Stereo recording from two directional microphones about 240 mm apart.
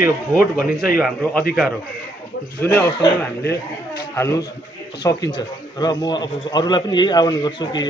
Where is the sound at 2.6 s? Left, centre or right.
Centre.